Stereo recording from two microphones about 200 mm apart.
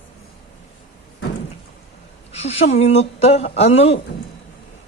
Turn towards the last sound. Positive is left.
turn(degrees=30)  # may be behind; listen again after turning